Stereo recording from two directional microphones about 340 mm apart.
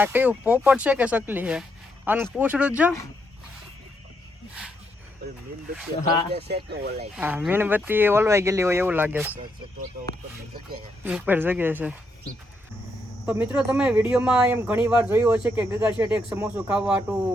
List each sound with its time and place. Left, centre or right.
0.0 s speech: centre
6.3 s speech: right
7.2 s speech: centre
11.0 s speech: centre
13.2 s speech: centre